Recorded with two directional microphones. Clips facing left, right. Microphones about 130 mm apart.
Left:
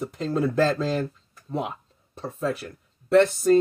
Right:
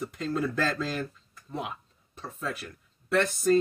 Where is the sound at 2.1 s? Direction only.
30° left (ahead or behind).